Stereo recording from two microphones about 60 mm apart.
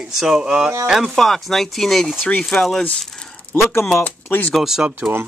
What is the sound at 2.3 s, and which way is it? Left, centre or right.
Speech, left.